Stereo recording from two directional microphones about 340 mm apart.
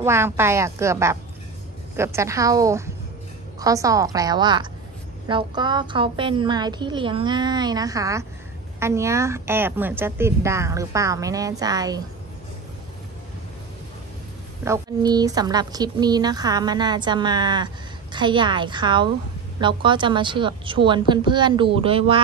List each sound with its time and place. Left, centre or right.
0.0 s a woman's voice: centre
14.6 s a woman's voice: centre